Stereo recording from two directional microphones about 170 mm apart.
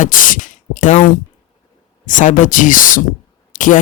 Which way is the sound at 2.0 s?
50° left (ahead or behind).